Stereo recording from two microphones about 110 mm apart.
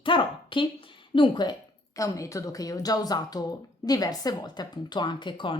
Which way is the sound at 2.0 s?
30° left (ahead or behind).